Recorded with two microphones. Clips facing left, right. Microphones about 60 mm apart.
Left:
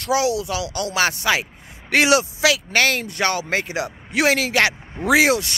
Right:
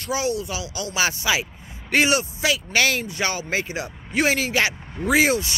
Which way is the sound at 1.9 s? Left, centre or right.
Left.